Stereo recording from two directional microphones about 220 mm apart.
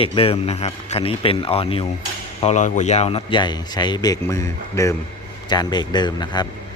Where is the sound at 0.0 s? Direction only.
25° left (ahead or behind).